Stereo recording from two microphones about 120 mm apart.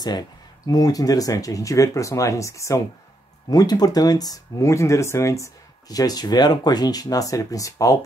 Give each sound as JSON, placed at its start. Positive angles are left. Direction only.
{"t": 0.0, "sound": "speech", "side_deg": 35}